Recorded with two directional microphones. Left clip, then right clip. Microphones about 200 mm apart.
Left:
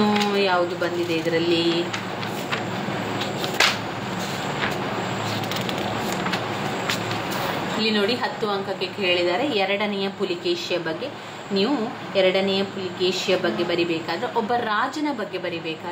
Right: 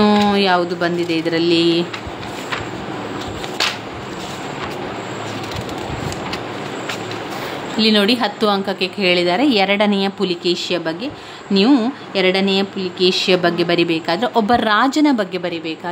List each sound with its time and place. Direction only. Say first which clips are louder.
0.0 s a sound: right 6 dB; 60° right (ahead or behind)
1.3 s a woman's voice: right 6 dB; 60° right (ahead or behind)
7.8 s a woman's voice: right 8 dB; 60° right (ahead or behind)
12.2 s speech: right 3 dB; 50° right (ahead or behind)